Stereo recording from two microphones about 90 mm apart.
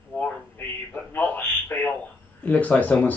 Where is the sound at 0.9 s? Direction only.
20° left (ahead or behind).